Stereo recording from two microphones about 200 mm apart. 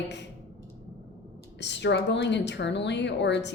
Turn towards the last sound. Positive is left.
turn(degrees=60)  # may be behind; listen again after turning